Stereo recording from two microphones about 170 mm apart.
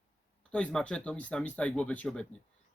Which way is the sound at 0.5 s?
5° left (ahead or behind).